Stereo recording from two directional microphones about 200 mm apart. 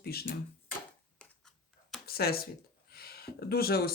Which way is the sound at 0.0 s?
50° left (ahead or behind).